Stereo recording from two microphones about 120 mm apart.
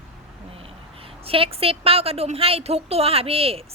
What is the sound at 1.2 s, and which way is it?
A woman's voice, 50° right (ahead or behind).